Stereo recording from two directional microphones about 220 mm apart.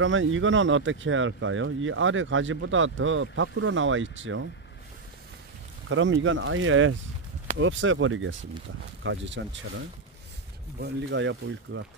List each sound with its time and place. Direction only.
0.0 s speech: 60° right (ahead or behind)
5.9 s speech: 60° right (ahead or behind)